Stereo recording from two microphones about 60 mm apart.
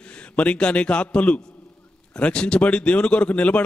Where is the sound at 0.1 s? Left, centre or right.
Left.